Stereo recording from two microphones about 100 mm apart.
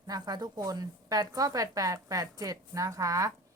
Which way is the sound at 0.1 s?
40° right (ahead or behind).